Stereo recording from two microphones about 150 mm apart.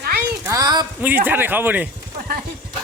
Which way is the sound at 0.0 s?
90° right.